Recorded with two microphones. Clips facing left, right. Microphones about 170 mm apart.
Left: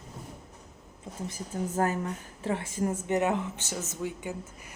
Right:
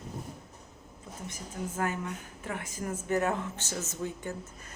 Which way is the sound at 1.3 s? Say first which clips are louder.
Left 4 dB; 40° left (ahead or behind).